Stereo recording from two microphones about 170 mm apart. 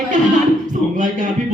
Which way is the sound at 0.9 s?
50° right (ahead or behind).